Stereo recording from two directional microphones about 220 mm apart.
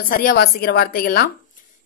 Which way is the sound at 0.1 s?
40° left (ahead or behind).